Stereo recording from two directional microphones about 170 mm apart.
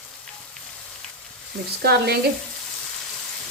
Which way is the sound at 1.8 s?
70° right (ahead or behind).